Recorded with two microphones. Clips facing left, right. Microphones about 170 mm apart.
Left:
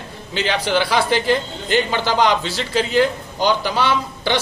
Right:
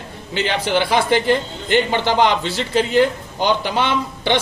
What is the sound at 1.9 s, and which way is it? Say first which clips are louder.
Speech: right 1 dB; 20° right (ahead or behind).